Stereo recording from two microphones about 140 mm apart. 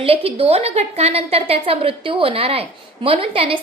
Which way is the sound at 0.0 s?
45° right (ahead or behind).